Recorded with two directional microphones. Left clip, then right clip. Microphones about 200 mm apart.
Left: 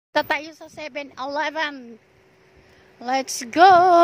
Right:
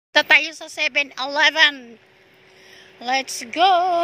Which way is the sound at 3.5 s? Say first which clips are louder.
Left 4 dB; 45° left (ahead or behind).